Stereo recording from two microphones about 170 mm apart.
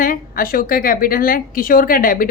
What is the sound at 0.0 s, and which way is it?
A woman's voice, 55° left (ahead or behind).